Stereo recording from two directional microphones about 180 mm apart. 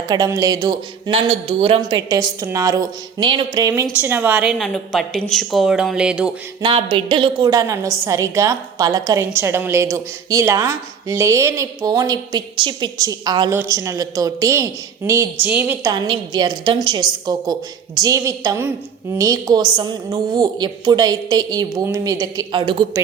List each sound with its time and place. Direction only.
0.1 s a woman's voice: 20° right (ahead or behind)
4.5 s speech: centre (ahead or behind)
6.6 s a woman's voice: 30° right (ahead or behind); by 15.9 s 10° right (ahead or behind)
15.9 s speech: 25° right (ahead or behind)